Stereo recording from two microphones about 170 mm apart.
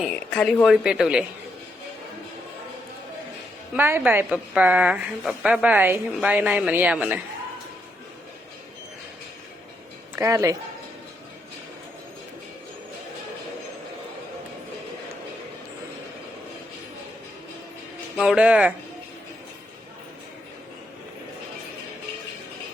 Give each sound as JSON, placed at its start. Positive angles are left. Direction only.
{"t": 0.0, "sound": "a woman's voice", "side_deg": 0}
{"t": 3.8, "sound": "a woman's voice", "side_deg": -15}
{"t": 10.2, "sound": "speech", "side_deg": -15}
{"t": 18.2, "sound": "a woman's voice", "side_deg": -5}